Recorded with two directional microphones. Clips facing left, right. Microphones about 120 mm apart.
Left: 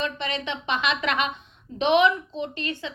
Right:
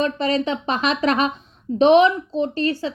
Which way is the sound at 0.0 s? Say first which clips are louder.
Right 9 dB; 40° right (ahead or behind).